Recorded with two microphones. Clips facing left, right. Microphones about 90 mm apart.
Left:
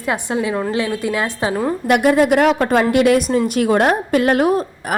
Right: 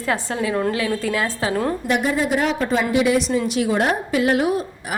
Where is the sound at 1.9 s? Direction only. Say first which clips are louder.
Left 9 dB; 65° left (ahead or behind); by 4.9 s 50° left (ahead or behind).